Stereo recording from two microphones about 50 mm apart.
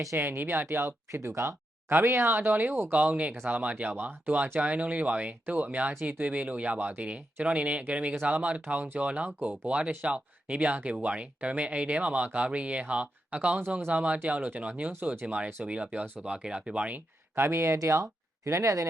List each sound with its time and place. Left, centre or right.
0.2 s speech: right
1.9 s speech: right
17.3 s speech: right
17.6 s speech: right